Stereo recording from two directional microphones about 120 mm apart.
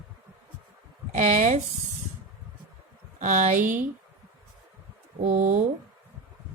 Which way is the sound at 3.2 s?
90° right.